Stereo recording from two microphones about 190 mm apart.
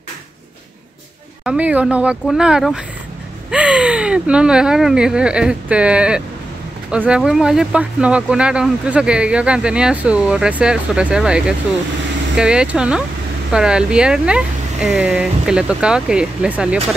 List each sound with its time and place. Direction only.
1.4 s speech: 5° right (ahead or behind)